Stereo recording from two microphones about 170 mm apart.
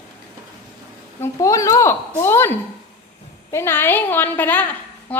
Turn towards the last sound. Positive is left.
turn(degrees=10)  # may be behind; listen again after turning